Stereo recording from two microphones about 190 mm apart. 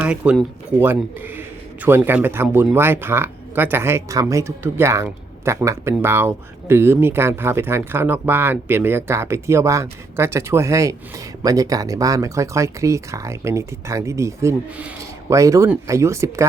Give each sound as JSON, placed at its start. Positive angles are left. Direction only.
{"t": 0.0, "sound": "speech", "side_deg": -5}